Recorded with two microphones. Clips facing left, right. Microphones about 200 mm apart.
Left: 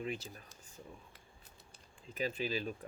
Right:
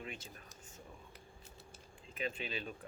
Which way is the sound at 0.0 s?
35° left (ahead or behind).